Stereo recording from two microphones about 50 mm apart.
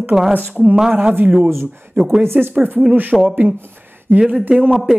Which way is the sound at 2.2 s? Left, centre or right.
Right.